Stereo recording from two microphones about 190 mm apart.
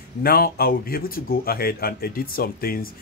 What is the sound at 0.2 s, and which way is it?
Speech, 55° left (ahead or behind).